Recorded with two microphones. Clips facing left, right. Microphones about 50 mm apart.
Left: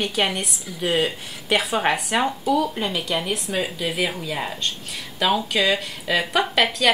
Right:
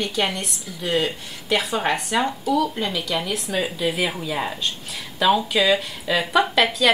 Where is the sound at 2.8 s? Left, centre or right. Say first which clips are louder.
Even; centre.